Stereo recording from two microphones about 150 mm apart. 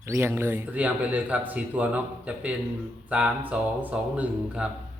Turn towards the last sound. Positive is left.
turn(degrees=-5)  # may be behind; listen again after turning